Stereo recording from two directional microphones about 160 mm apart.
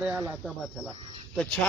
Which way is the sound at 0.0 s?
5° right (ahead or behind).